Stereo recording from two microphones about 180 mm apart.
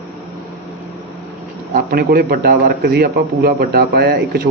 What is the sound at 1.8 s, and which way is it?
A man's voice, 55° right (ahead or behind).